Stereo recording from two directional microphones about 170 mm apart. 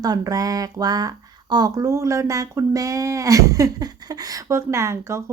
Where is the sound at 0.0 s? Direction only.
20° right (ahead or behind).